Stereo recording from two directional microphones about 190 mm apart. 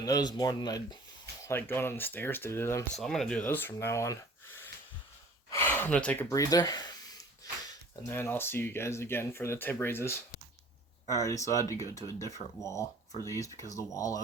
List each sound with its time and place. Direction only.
0.0 s speech: 20° left (ahead or behind)
2.9 s speech: centre (ahead or behind)